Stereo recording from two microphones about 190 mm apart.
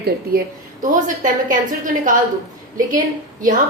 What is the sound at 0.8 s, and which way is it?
A woman's voice, 45° right (ahead or behind).